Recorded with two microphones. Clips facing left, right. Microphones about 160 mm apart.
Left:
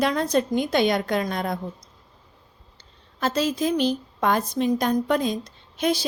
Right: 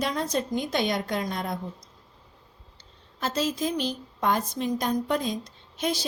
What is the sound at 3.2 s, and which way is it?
A woman's voice, 65° left (ahead or behind).